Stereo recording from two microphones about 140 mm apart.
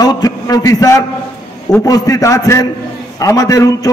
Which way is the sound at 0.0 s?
25° left (ahead or behind).